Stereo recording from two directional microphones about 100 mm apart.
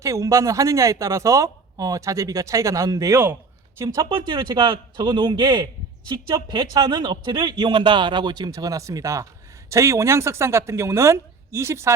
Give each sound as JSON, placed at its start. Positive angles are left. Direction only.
{"t": 0.0, "sound": "a woman's voice", "side_deg": -30}